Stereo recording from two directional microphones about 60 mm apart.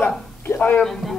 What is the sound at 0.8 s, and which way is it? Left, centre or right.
Speech, centre.